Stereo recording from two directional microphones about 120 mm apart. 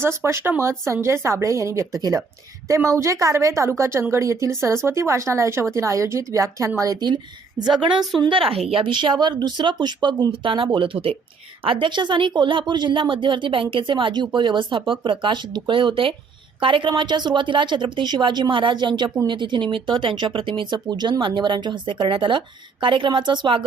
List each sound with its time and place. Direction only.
0.0 s speech: 20° right (ahead or behind); by 23.6 s 40° right (ahead or behind)